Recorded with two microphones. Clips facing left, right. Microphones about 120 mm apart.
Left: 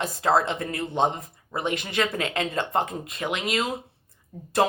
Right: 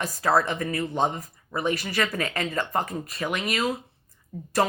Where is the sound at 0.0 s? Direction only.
25° left (ahead or behind).